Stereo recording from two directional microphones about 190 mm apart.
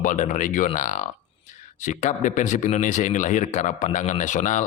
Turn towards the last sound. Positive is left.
turn(degrees=40)  # may be behind; listen again after turning